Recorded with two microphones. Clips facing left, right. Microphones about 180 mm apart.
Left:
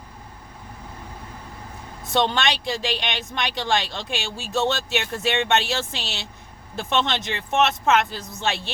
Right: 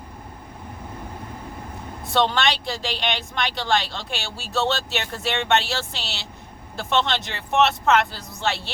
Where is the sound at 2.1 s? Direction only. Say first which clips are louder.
Right 1 dB; 20° left (ahead or behind).